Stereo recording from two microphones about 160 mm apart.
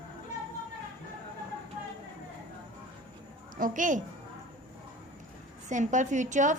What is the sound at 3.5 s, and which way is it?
Speech, 55° right (ahead or behind).